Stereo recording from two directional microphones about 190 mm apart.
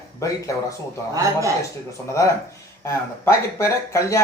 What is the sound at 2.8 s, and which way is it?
Speech, 15° left (ahead or behind).